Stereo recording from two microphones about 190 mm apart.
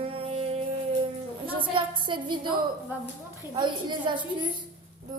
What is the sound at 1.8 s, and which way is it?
Speech, 25° right (ahead or behind).